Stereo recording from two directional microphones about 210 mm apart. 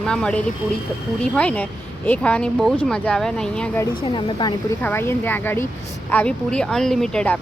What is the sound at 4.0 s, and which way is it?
Speech, 20° left (ahead or behind).